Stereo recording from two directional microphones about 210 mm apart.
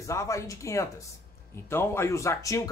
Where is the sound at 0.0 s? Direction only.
15° left (ahead or behind).